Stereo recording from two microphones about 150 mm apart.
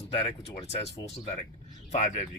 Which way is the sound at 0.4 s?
45° left (ahead or behind).